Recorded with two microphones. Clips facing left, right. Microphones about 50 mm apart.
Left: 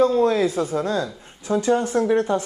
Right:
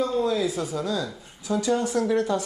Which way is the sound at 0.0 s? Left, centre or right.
Left.